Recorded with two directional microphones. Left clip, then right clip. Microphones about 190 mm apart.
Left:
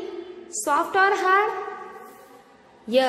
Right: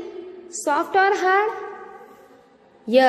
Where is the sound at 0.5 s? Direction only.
25° right (ahead or behind).